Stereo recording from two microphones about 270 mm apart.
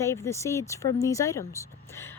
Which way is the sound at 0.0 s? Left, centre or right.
Centre.